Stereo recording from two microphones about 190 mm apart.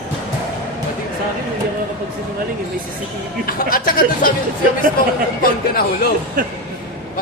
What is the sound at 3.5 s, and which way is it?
Speech, 50° left (ahead or behind).